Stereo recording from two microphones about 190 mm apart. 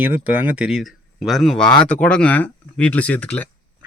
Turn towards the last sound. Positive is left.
turn(degrees=10)  # may be behind; listen again after turning